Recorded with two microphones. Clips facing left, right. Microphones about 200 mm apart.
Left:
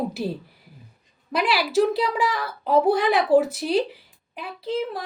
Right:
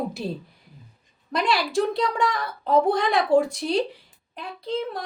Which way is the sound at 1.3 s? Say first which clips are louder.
Left 2 dB; 5° left (ahead or behind).